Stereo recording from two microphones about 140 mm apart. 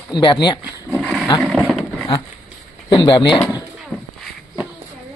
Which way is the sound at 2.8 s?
35° left (ahead or behind).